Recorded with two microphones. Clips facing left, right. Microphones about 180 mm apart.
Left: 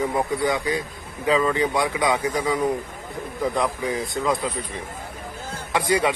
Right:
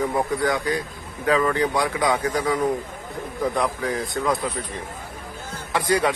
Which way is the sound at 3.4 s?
20° left (ahead or behind).